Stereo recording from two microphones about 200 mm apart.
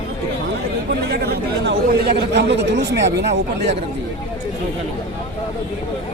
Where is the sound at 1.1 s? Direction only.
55° right (ahead or behind).